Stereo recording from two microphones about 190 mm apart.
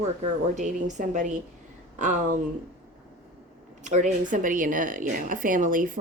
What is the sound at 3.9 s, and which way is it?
A woman's voice, 40° right (ahead or behind).